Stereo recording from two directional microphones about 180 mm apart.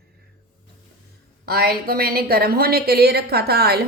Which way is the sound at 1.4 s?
60° right (ahead or behind).